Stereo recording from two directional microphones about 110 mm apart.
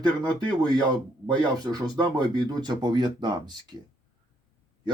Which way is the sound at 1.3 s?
40° right (ahead or behind).